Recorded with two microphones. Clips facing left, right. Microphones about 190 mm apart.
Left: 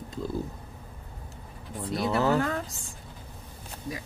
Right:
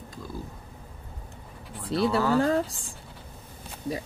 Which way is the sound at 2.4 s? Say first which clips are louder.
Right 6 dB; 30° right (ahead or behind).